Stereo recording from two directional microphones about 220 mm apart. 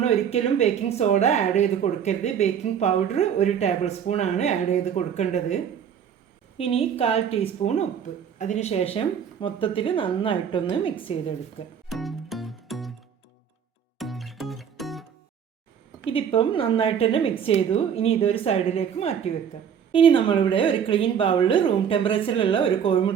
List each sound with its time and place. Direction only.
0.0 s speech: 30° left (ahead or behind)
6.6 s a woman's voice: 25° left (ahead or behind)
11.9 s music: centre (ahead or behind)
14.0 s music: centre (ahead or behind)
16.0 s a woman's voice: 25° left (ahead or behind)